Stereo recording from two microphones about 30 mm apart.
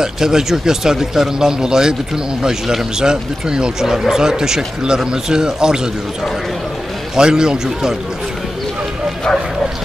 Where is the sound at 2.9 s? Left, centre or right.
Right.